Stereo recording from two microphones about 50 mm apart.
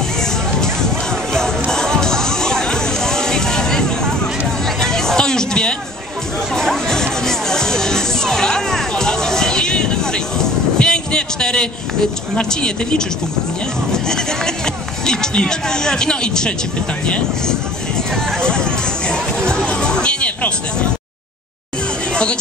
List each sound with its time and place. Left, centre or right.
1.3 s music: centre
4.8 s a sound: centre
6.5 s music: centre
13.9 s speech: centre
18.4 s music: centre
22.1 s music: centre